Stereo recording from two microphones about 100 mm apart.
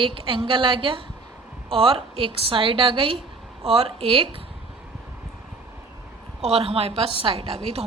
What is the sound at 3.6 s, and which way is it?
Speech, 75° right (ahead or behind).